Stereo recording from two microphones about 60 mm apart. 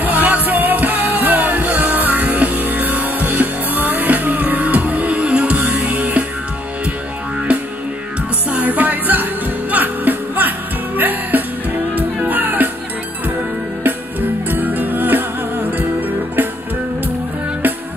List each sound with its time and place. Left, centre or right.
0.0 s music: right
8.5 s music: right
13.8 s music: right